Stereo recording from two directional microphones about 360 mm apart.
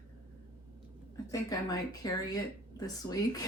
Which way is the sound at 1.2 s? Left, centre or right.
Centre.